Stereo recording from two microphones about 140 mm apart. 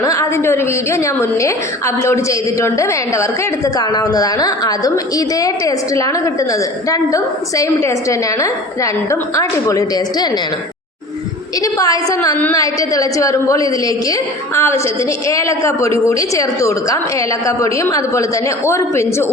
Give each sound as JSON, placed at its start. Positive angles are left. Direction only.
{"t": 0.0, "sound": "a woman's voice", "side_deg": 20}
{"t": 11.6, "sound": "a woman's voice", "side_deg": 25}